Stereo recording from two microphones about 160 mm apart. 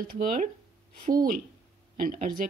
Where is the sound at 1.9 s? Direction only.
60° right (ahead or behind).